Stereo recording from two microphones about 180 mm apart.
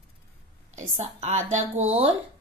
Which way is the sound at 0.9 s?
40° right (ahead or behind).